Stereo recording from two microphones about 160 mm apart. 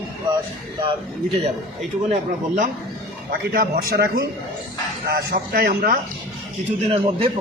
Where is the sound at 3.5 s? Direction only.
75° right (ahead or behind).